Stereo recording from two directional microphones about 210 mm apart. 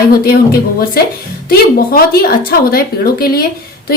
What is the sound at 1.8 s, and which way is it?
A woman's voice, 45° left (ahead or behind).